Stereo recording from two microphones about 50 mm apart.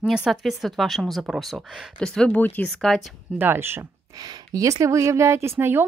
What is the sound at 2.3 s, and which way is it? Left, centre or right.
Speech, left.